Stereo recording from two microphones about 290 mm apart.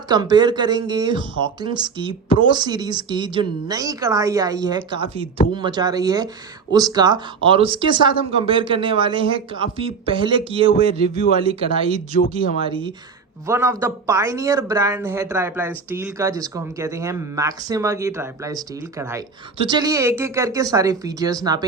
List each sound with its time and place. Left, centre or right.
0.1 s speech: centre
12.1 s speech: left
12.6 s speech: centre